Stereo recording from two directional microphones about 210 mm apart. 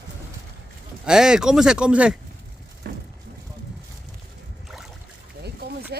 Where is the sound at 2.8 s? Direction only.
50° right (ahead or behind).